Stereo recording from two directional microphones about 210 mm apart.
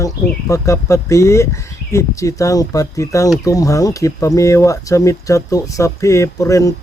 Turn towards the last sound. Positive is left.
turn(degrees=15)  # may be behind; listen again after turning